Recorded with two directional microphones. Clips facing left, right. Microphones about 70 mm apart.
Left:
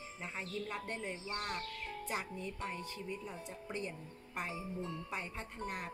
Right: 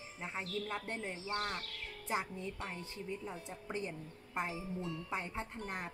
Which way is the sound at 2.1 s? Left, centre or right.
Right.